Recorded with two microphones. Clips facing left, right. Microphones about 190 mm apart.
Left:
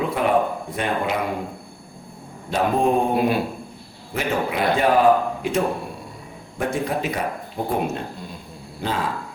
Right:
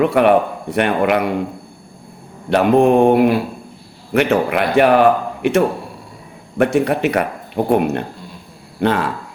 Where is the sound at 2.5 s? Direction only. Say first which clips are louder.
Right 8 dB; 70° right (ahead or behind).